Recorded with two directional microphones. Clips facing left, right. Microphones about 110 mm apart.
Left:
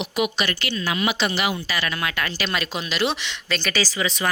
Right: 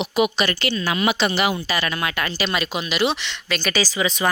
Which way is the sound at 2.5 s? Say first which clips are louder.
Right 2 dB; 10° right (ahead or behind).